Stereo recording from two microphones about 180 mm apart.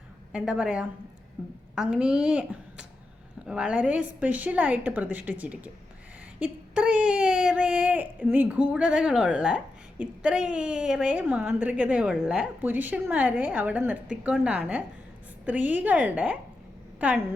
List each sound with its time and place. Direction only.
0.3 s a woman's voice: 5° right (ahead or behind)